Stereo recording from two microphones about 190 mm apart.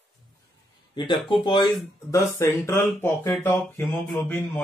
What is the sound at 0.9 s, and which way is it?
Speech, 25° left (ahead or behind).